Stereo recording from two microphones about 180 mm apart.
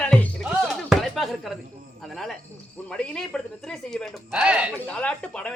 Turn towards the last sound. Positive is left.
turn(degrees=5)  # may be behind; listen again after turning